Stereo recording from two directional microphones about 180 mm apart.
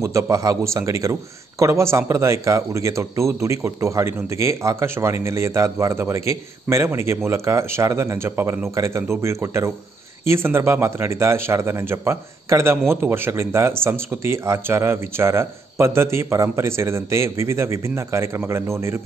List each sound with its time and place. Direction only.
0.0 s speech: 15° right (ahead or behind)